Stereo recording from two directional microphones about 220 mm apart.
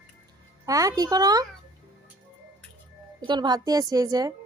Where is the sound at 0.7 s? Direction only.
15° right (ahead or behind).